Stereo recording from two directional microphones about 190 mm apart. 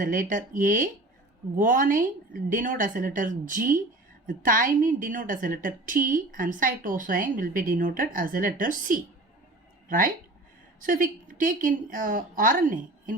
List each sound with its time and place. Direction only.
0.0 s a woman's voice: 45° right (ahead or behind)
10.8 s a woman's voice: 45° right (ahead or behind)